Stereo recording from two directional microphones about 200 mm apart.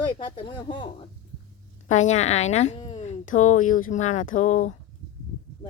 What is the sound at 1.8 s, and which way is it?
A woman's voice, 35° left (ahead or behind).